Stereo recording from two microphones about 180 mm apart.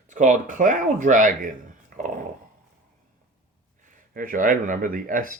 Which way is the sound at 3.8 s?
50° right (ahead or behind).